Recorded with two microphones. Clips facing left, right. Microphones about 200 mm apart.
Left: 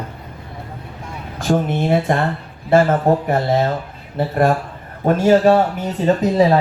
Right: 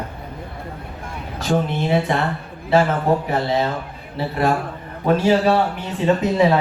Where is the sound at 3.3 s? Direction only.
50° left (ahead or behind).